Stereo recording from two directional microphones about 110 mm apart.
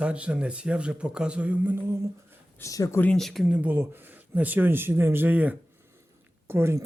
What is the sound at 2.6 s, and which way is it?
Speech, 30° left (ahead or behind).